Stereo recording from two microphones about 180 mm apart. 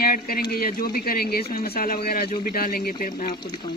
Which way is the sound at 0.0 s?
55° left (ahead or behind).